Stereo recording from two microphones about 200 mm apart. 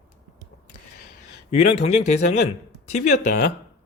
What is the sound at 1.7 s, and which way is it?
Speech, 35° left (ahead or behind).